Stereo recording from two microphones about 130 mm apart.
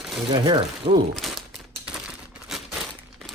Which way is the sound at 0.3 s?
35° right (ahead or behind).